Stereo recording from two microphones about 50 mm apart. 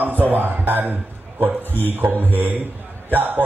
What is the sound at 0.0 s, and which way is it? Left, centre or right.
A man's voice, right.